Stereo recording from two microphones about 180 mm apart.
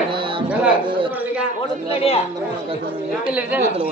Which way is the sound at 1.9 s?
35° left (ahead or behind).